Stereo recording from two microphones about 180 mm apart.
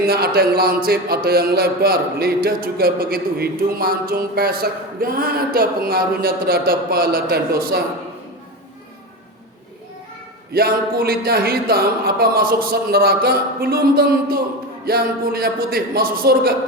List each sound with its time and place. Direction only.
0.1 s speech: 60° right (ahead or behind)
10.5 s speech: 55° right (ahead or behind)